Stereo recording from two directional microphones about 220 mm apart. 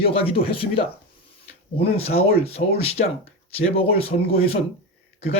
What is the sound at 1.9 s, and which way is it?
Speech, 25° left (ahead or behind).